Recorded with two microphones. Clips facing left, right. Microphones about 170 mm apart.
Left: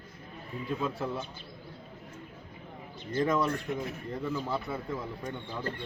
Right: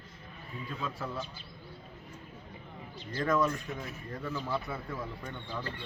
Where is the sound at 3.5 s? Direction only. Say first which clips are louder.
Left 5 dB; 65° left (ahead or behind).